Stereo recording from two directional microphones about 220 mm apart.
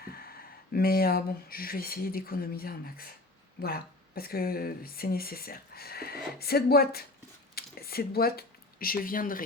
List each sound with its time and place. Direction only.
0.0 s speech: 45° left (ahead or behind)